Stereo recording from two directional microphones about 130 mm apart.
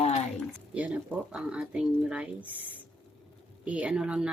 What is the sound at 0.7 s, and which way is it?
Speech, 10° right (ahead or behind).